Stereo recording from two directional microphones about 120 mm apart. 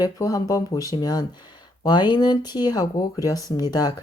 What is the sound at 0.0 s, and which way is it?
Speech, 30° left (ahead or behind).